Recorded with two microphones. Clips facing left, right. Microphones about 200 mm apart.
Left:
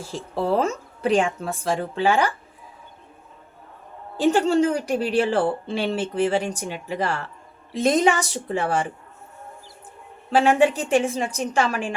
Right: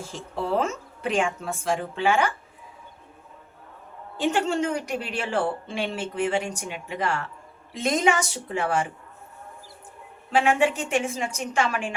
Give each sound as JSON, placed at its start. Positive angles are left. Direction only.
{"t": 0.1, "sound": "a woman's voice", "side_deg": 35}
{"t": 4.2, "sound": "a woman's voice", "side_deg": 35}
{"t": 10.3, "sound": "a woman's voice", "side_deg": 35}